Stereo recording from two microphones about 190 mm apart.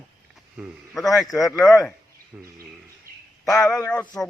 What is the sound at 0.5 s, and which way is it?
A man's voice, 5° right (ahead or behind).